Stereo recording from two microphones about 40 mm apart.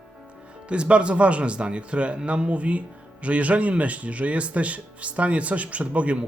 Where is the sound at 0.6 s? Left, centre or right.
Right.